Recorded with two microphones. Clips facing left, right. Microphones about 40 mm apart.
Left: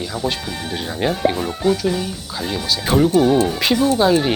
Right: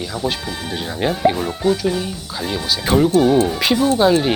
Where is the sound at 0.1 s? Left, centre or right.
Centre.